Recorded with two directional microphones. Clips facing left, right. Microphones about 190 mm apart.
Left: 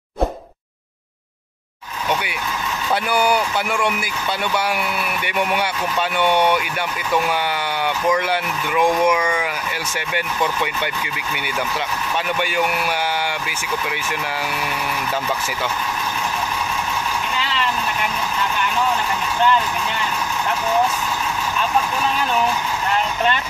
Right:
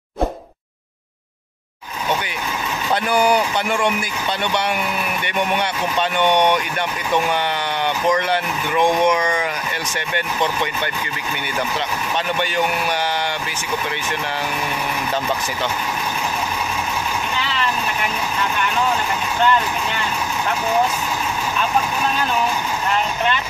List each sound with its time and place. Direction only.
2.9 s speech: 5° left (ahead or behind)
5.2 s speech: 5° left (ahead or behind)
7.8 s speech: 5° left (ahead or behind)